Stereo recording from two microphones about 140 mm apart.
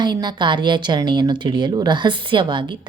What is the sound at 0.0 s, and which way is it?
A woman's voice, 30° right (ahead or behind).